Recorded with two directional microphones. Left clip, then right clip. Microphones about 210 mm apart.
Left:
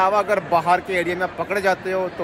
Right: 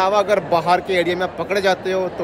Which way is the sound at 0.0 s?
10° right (ahead or behind).